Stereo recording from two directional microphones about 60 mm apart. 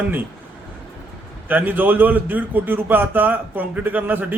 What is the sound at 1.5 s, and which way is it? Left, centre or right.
A man's voice, right.